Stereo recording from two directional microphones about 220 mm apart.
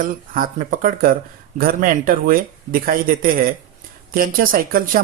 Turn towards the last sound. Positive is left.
turn(degrees=-40)  # may be behind; listen again after turning